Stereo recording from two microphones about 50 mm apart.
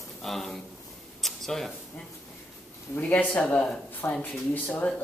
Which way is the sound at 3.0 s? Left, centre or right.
Left.